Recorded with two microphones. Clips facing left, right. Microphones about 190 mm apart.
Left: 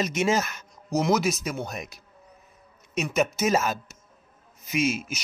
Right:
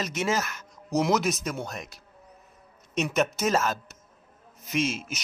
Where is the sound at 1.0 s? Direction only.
Centre (ahead or behind).